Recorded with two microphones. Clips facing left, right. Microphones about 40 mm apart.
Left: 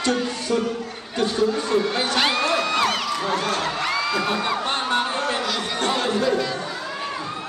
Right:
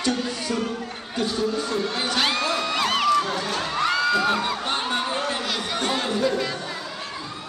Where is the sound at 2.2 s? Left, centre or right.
Centre.